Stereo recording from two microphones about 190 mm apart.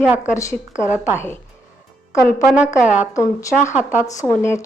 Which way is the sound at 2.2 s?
Centre (ahead or behind).